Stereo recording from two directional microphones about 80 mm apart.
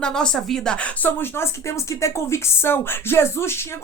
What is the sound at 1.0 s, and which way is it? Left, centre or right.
Speech, left.